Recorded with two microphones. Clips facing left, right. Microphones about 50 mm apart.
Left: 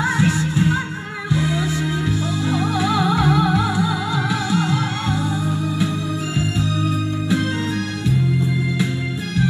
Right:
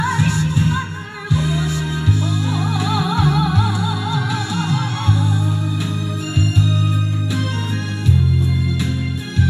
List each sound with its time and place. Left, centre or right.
0.0 s music: centre